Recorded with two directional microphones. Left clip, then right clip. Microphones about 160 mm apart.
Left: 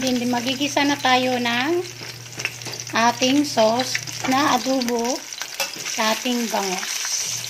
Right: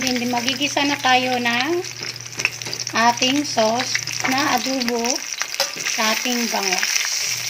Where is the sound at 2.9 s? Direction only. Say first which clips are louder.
Right 1 dB; 10° left (ahead or behind).